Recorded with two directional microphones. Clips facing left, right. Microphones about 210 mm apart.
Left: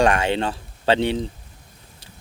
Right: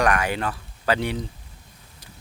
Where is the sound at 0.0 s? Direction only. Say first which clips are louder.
Left 4 dB; 25° left (ahead or behind).